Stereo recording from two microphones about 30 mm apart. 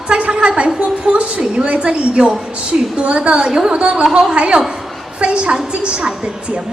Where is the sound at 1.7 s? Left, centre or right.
Right.